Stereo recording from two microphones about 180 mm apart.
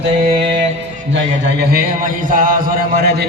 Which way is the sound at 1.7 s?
55° right (ahead or behind).